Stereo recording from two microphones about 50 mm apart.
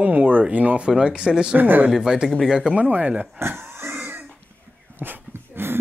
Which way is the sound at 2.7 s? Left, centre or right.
Right.